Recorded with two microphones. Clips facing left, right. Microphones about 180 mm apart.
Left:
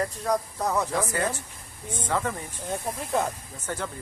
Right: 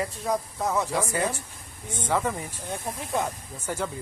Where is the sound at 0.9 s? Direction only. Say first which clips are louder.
Even; 15° right (ahead or behind).